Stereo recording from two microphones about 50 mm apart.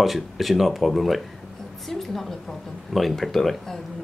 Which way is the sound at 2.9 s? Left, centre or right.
Centre.